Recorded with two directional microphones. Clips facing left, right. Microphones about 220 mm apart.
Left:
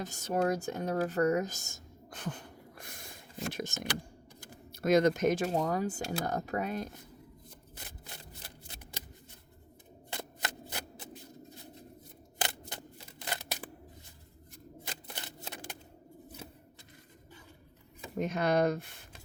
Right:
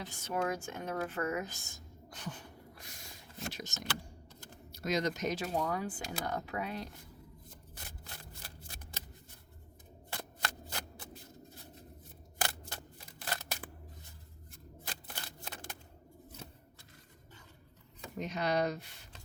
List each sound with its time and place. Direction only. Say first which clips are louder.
0.0 s speech: left 5 dB; 45° left (ahead or behind)
4.4 s a sound: left 3 dB; 10° left (ahead or behind)
4.7 s speech: left 8 dB; 55° left (ahead or behind)
8.0 s shuffling cards: left 2 dB; 20° left (ahead or behind)
10.1 s shuffling cards: left 2 dB; 20° left (ahead or behind)
12.4 s scissors: left 1 dB; 20° left (ahead or behind)
14.8 s shuffling cards: left 1 dB; 20° left (ahead or behind)
18.2 s speech: left 5 dB; 50° left (ahead or behind)